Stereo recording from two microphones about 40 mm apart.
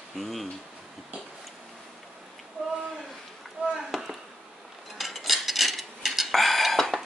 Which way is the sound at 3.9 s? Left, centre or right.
Centre.